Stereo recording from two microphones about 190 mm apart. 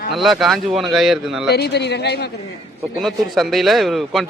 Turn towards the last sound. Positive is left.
turn(degrees=0)  # may be behind; listen again after turning